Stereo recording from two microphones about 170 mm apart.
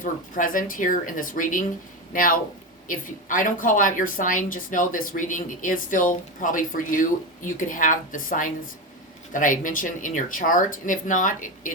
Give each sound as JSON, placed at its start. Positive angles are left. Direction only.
{"t": 0.0, "sound": "a woman's voice", "side_deg": 50}